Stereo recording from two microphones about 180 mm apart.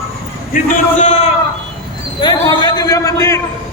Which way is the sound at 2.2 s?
25° left (ahead or behind).